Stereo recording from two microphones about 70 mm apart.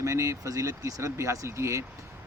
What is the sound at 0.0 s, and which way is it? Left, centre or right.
Speech, right.